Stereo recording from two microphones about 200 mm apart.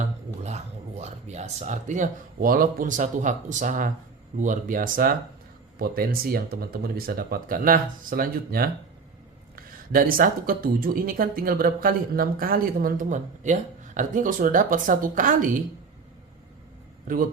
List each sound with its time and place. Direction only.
0.4 s speech: 35° right (ahead or behind)
9.9 s speech: 45° right (ahead or behind)